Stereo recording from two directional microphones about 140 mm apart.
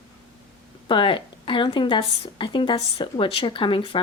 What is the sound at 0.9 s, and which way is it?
A woman's voice, 35° left (ahead or behind).